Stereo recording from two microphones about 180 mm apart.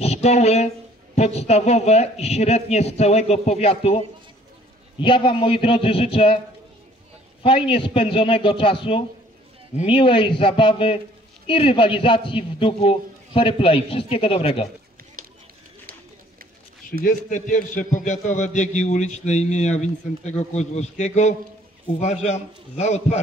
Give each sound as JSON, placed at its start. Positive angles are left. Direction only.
{"t": 0.0, "sound": "a man's voice", "side_deg": 35}
{"t": 5.0, "sound": "a man's voice", "side_deg": 30}
{"t": 7.4, "sound": "a man's voice", "side_deg": 30}
{"t": 17.0, "sound": "a man's voice", "side_deg": 45}